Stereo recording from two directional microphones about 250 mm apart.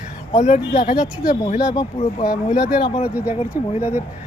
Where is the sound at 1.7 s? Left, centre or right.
Centre.